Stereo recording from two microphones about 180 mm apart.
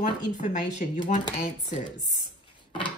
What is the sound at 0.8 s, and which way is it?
Speech, 45° left (ahead or behind).